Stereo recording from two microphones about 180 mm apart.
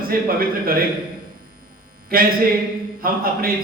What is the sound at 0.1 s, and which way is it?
Speech, 55° right (ahead or behind).